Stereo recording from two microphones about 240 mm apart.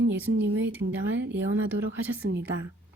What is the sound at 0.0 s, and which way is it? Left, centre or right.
Speech, right.